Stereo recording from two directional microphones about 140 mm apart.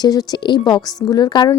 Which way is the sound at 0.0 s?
30° left (ahead or behind).